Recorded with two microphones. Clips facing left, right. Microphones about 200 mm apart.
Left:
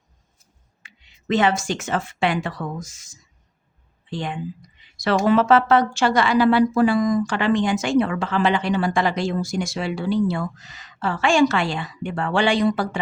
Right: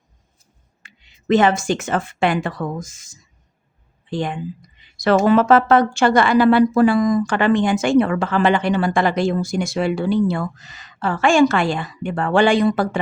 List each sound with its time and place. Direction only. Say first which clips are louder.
0.8 s a sound: right 1 dB; 50° right (ahead or behind)
1.3 s speech: right 4 dB; 50° right (ahead or behind)
4.1 s speech: right 4 dB; 50° right (ahead or behind)